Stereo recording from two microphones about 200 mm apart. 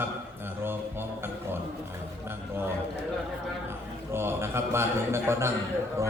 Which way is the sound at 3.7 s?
10° right (ahead or behind).